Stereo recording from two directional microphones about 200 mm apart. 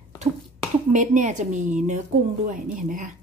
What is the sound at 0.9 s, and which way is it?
Speech, 40° right (ahead or behind).